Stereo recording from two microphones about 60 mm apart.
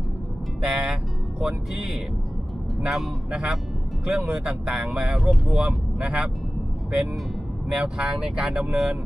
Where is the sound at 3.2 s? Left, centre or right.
Centre.